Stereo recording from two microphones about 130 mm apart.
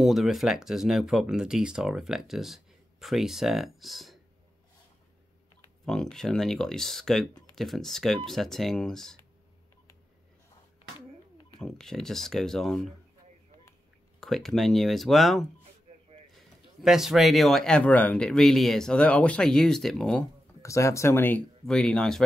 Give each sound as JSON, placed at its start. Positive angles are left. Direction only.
{"t": 0.0, "sound": "speech", "side_deg": 0}
{"t": 5.9, "sound": "speech", "side_deg": 5}
{"t": 11.5, "sound": "speech", "side_deg": 5}
{"t": 14.2, "sound": "speech", "side_deg": 5}
{"t": 16.8, "sound": "speech", "side_deg": 0}
{"t": 20.6, "sound": "speech", "side_deg": 25}
{"t": 21.6, "sound": "speech", "side_deg": 5}